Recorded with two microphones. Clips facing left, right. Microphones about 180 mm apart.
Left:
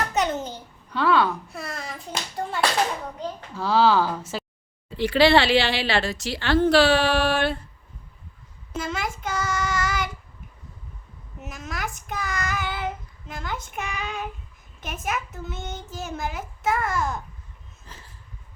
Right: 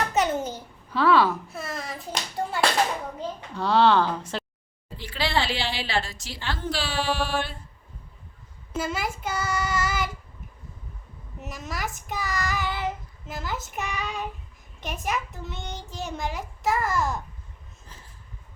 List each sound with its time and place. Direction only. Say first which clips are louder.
0.1 s babbling: right 1 dB; 5° right (ahead or behind)
3.5 s child singing: even; centre (ahead or behind)
4.9 s a woman's voice: left 10 dB; 75° left (ahead or behind)
8.7 s child singing: even; 5° right (ahead or behind)
11.3 s child singing: even; centre (ahead or behind)
17.9 s a sound: left 4 dB; 80° left